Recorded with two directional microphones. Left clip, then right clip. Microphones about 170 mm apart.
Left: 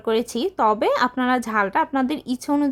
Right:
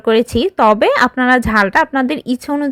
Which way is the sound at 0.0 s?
20° right (ahead or behind).